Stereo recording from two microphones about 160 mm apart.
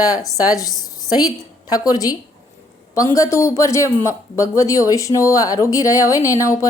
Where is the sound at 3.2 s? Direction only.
20° left (ahead or behind).